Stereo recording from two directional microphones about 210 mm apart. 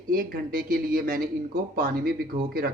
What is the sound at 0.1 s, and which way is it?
Speech, 45° right (ahead or behind).